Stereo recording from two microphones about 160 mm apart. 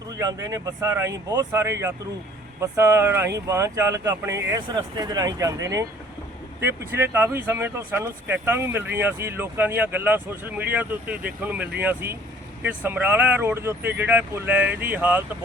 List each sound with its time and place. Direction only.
0.1 s speech: 20° right (ahead or behind)